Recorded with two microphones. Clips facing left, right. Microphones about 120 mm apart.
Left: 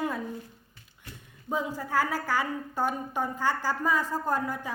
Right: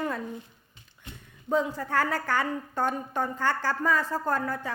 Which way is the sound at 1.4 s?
10° left (ahead or behind).